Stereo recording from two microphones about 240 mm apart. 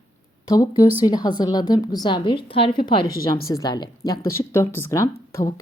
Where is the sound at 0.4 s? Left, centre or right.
Centre.